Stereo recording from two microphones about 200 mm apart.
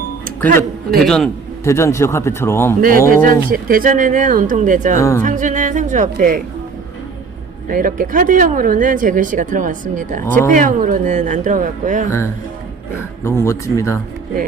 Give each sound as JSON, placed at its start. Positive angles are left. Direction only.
{"t": 1.0, "sound": "a man's voice", "side_deg": 0}
{"t": 1.6, "sound": "speech", "side_deg": 15}
{"t": 3.1, "sound": "speech", "side_deg": -45}
{"t": 4.9, "sound": "speech", "side_deg": 15}
{"t": 5.2, "sound": "speech", "side_deg": -40}
{"t": 7.7, "sound": "speech", "side_deg": -45}
{"t": 13.2, "sound": "speech", "side_deg": 15}